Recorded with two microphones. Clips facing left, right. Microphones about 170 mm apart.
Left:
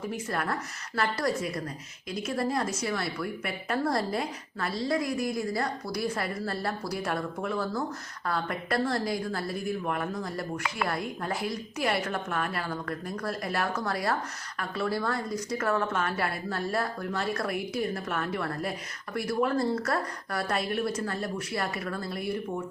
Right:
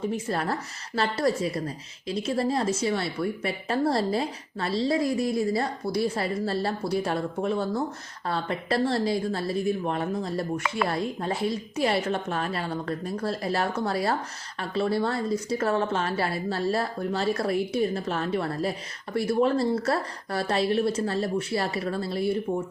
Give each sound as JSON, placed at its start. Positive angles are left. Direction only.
{"t": 0.1, "sound": "speech", "side_deg": -30}